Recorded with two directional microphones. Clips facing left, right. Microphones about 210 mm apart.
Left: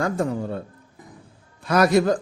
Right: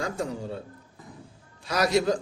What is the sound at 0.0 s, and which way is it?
Speech, 55° left (ahead or behind).